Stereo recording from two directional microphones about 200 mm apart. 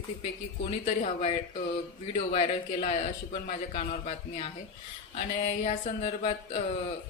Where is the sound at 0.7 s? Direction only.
35° left (ahead or behind).